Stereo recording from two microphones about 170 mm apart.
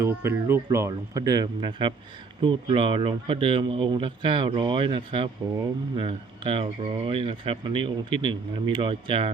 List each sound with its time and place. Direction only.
0.0 s speech: 15° right (ahead or behind); by 9.3 s 30° right (ahead or behind)